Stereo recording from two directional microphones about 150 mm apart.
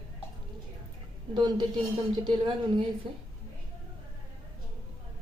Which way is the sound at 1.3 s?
30° right (ahead or behind).